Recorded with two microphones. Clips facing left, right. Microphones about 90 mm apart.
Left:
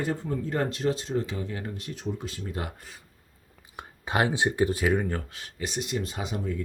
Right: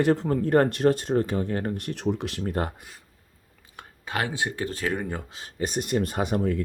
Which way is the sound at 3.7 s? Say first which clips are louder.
Left 3 dB; 20° left (ahead or behind).